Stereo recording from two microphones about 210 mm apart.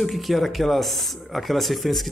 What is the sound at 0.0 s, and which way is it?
Speech, centre (ahead or behind).